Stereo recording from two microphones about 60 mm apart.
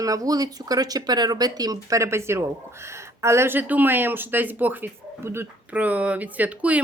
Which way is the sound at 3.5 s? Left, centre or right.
Right.